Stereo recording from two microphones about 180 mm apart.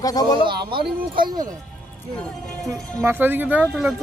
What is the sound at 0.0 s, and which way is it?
Speech, 20° left (ahead or behind).